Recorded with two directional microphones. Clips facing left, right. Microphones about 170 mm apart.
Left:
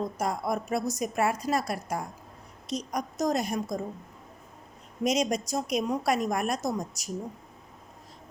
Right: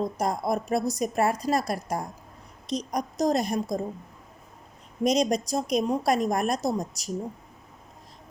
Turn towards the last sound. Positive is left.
turn(degrees=-35)  # may be behind; listen again after turning